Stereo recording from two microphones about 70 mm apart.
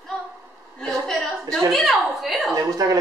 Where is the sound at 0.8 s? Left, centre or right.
Centre.